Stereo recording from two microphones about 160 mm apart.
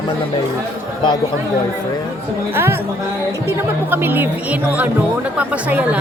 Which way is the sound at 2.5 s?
15° right (ahead or behind).